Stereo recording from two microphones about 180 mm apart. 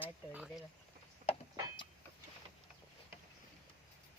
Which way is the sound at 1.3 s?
25° left (ahead or behind).